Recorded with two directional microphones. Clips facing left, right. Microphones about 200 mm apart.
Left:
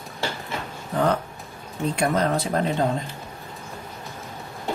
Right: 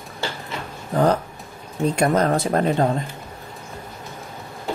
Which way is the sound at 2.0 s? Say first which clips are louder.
Right 3 dB; 45° right (ahead or behind).